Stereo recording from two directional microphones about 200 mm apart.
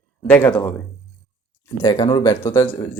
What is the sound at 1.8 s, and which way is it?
Speech, 20° left (ahead or behind).